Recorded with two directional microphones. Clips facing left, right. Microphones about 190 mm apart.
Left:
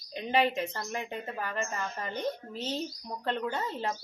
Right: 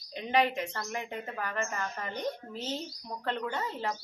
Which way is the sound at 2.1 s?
10° right (ahead or behind).